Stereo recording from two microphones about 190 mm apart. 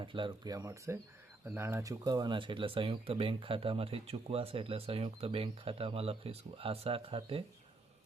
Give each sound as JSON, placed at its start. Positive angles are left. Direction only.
{"t": 0.0, "sound": "speech", "side_deg": -25}